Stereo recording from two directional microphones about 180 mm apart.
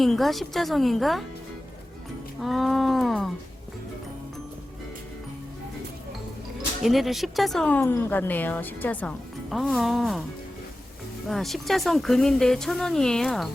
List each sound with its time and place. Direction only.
0.0 s speech: centre (ahead or behind)
2.4 s speech: centre (ahead or behind)
6.8 s speech: centre (ahead or behind)
11.3 s speech: centre (ahead or behind)